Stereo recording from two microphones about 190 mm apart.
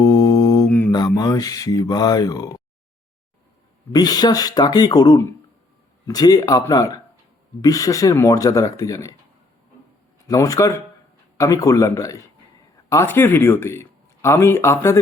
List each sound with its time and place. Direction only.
0.0 s mantra: 15° left (ahead or behind)
0.9 s speech: 20° left (ahead or behind)
3.9 s speech: 20° left (ahead or behind)
10.2 s speech: 15° left (ahead or behind)